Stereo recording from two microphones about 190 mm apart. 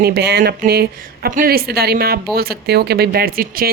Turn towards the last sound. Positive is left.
turn(degrees=-50)  # may be behind; listen again after turning